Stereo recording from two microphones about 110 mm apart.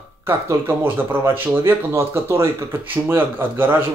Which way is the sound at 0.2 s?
20° right (ahead or behind).